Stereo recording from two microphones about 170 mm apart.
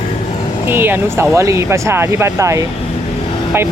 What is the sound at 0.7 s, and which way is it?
Speech, 10° right (ahead or behind).